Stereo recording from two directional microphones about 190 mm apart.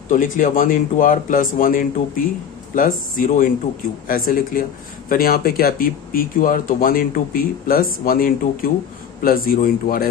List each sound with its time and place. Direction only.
0.1 s speech: 45° left (ahead or behind)